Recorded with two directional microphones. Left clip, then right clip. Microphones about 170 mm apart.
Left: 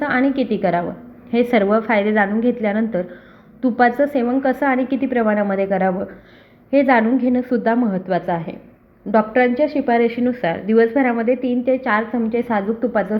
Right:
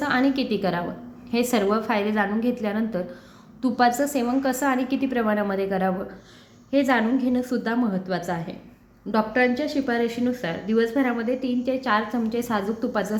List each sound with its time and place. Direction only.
0.0 s a woman's voice: 10° left (ahead or behind)